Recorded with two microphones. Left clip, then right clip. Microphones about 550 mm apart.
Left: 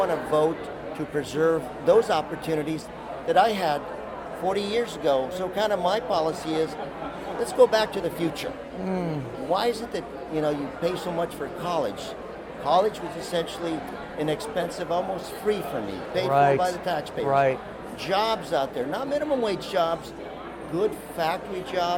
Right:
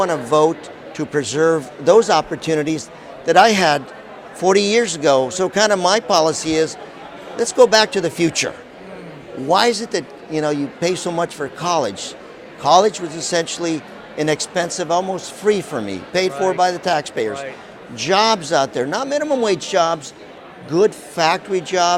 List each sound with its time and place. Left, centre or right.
0.0 s a man's voice: right
3.2 s speech: right
7.3 s speech: right
9.5 s a man's voice: right
20.7 s speech: right